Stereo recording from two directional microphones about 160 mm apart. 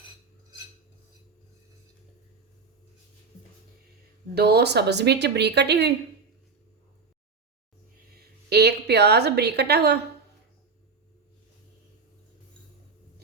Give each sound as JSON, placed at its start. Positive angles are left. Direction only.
{"t": 4.4, "sound": "a woman's voice", "side_deg": -90}
{"t": 8.1, "sound": "a woman's voice", "side_deg": -90}